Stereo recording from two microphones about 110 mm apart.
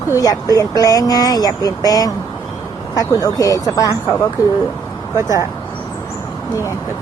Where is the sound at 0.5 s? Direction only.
35° left (ahead or behind).